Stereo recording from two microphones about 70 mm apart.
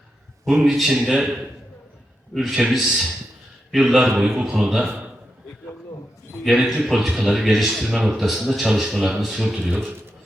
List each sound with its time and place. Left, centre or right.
0.6 s a man's voice: centre
6.4 s a man's voice: centre